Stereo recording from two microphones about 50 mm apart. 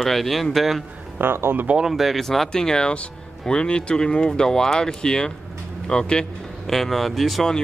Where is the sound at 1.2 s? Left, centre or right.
Right.